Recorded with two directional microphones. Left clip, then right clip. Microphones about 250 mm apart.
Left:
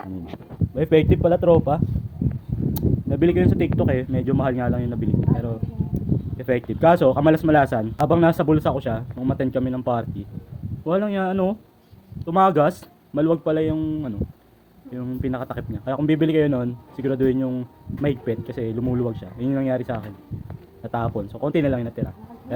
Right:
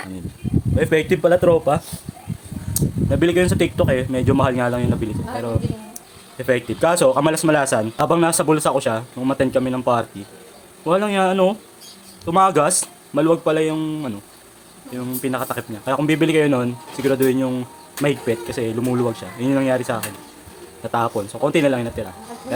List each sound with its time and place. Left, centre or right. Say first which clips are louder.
0.8 s speech: right 1 dB; centre
3.1 s speech: right 3 dB; centre